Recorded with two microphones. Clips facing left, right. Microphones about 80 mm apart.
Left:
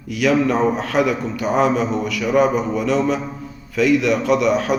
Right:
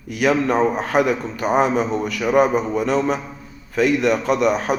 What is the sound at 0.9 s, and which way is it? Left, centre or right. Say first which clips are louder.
Speech: right 1 dB; right.